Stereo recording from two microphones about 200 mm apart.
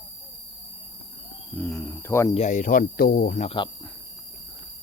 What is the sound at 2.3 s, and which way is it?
Speech, 35° left (ahead or behind).